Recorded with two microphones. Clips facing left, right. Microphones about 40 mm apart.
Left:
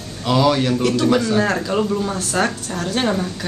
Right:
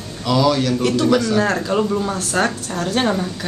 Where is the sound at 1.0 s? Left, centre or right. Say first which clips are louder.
Right 1 dB; centre.